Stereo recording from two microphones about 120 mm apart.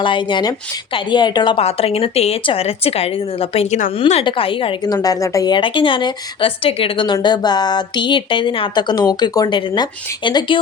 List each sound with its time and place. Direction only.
0.0 s speech: 45° left (ahead or behind)
1.5 s a woman's voice: 55° left (ahead or behind)
4.9 s speech: 30° left (ahead or behind)